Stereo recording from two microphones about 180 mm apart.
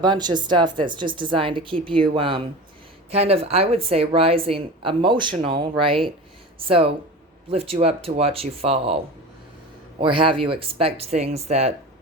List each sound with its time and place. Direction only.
0.0 s speech: 25° right (ahead or behind)
10.0 s speech: 30° right (ahead or behind)